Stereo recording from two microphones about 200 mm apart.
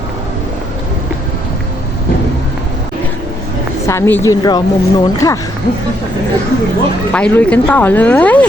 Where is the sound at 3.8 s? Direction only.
15° left (ahead or behind).